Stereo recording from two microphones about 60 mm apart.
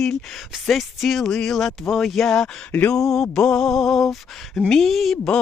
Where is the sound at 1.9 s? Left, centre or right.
Centre.